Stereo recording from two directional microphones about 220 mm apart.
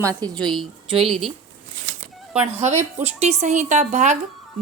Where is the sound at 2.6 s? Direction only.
30° right (ahead or behind).